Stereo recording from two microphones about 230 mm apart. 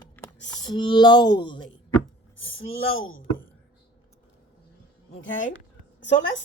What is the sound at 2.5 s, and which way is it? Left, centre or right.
Speech, left.